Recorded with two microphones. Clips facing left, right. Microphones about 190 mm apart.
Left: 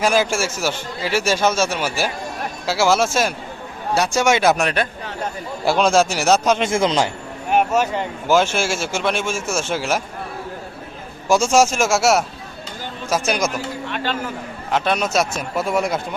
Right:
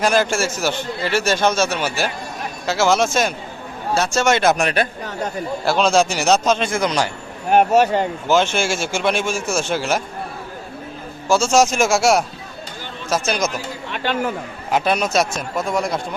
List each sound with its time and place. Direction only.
0.0 s a man's voice: 10° left (ahead or behind)
4.4 s speech: centre (ahead or behind)
5.6 s a man's voice: 10° left (ahead or behind)
6.7 s a man's voice: 25° left (ahead or behind)
7.5 s speech: 35° right (ahead or behind)
8.3 s speech: 5° left (ahead or behind)
11.3 s a man's voice: 15° left (ahead or behind)
14.7 s speech: 5° right (ahead or behind)